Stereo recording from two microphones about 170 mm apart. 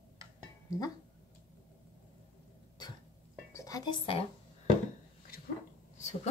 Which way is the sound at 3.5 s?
20° left (ahead or behind).